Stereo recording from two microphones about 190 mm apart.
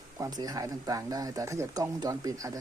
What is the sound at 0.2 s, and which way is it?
Speech, 20° right (ahead or behind).